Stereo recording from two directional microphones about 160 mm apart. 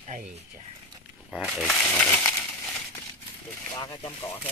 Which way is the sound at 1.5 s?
5° left (ahead or behind).